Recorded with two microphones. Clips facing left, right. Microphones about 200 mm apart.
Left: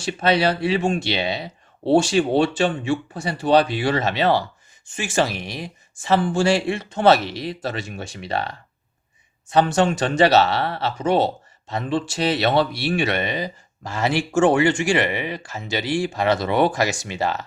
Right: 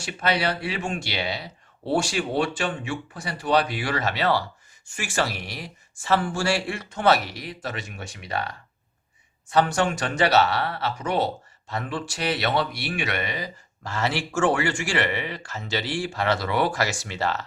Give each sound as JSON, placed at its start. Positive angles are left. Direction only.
{"t": 0.0, "sound": "speech", "side_deg": 25}